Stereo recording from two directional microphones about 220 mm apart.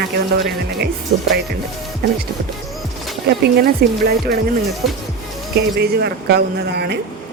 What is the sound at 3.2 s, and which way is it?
Speech, 45° right (ahead or behind).